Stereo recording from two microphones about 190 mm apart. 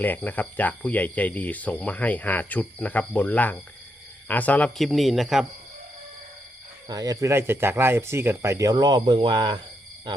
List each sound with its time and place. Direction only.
0.0 s speech: 10° left (ahead or behind)
6.8 s speech: 20° right (ahead or behind)